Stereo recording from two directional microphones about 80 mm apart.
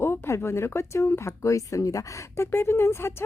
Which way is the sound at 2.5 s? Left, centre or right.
Left.